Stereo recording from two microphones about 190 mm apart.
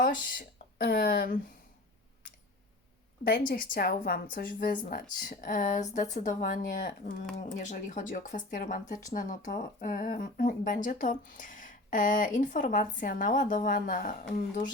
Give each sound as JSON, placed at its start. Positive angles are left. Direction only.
{"t": 0.8, "sound": "speech", "side_deg": 55}
{"t": 3.5, "sound": "speech", "side_deg": 50}